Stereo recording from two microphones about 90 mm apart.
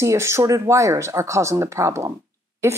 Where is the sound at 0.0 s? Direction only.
35° right (ahead or behind).